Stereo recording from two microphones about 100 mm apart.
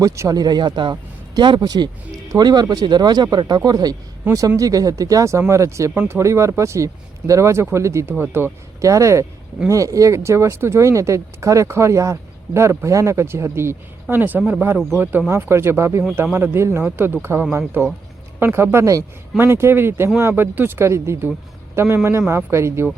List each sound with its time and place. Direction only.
0.0 s speech: 35° right (ahead or behind)